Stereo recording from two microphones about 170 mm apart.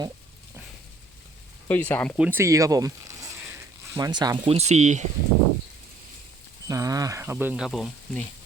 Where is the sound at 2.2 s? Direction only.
10° right (ahead or behind); by 5.0 s 45° right (ahead or behind).